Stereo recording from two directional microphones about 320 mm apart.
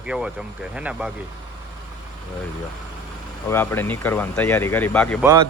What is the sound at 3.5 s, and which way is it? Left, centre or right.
Speech, centre.